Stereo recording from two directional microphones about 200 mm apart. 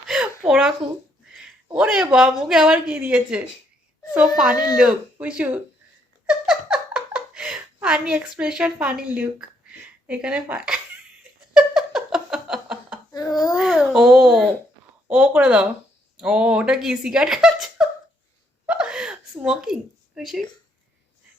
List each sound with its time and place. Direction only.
0.1 s a sound: 5° right (ahead or behind)
1.7 s a woman's voice: 5° right (ahead or behind)
4.5 s speech: 20° left (ahead or behind)
5.2 s speech: 5° right (ahead or behind)
6.2 s giggle: 5° right (ahead or behind)
11.2 s a sound: 5° right (ahead or behind)
13.1 s baby cry: 20° left (ahead or behind)
13.6 s a sound: 5° right (ahead or behind)
15.0 s a woman's voice: 5° right (ahead or behind)
18.6 s gasp: 5° right (ahead or behind)
19.4 s a woman's voice: 5° right (ahead or behind)